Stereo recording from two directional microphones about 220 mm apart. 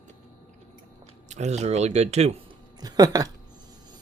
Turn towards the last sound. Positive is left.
turn(degrees=-15)  # may be behind; listen again after turning